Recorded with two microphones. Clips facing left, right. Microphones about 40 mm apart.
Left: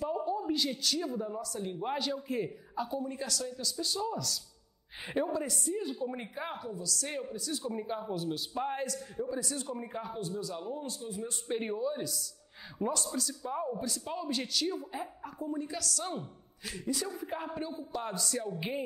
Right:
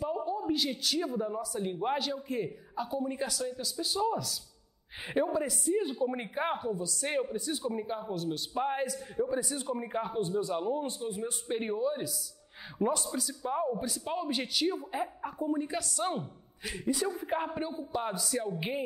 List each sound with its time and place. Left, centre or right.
0.0 s a man's voice: centre
2.0 s a man's voice: centre
3.1 s a woman's voice: centre
6.3 s a woman's voice: right
7.5 s a man's voice: centre
8.5 s speech: centre
9.9 s a woman's voice: right
11.2 s a woman's voice: centre